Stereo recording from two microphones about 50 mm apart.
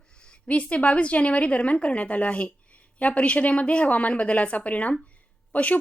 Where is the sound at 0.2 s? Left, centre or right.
Left.